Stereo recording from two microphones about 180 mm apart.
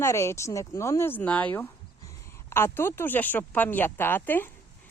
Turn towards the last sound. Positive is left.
turn(degrees=10)  # may be behind; listen again after turning